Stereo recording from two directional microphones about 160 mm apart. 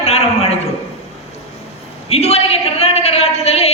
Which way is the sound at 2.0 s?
40° left (ahead or behind).